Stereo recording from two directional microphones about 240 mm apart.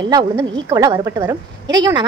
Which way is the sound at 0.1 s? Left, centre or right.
Centre.